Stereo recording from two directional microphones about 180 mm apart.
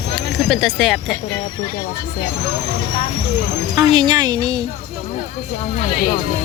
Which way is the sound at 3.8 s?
25° right (ahead or behind).